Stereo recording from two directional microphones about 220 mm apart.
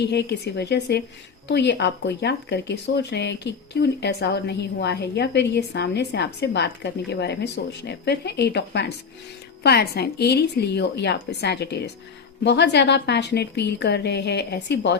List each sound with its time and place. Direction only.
0.0 s speech: 50° left (ahead or behind)